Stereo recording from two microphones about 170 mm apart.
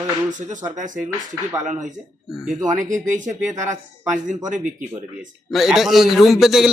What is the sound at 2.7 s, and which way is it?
Speech, 50° right (ahead or behind).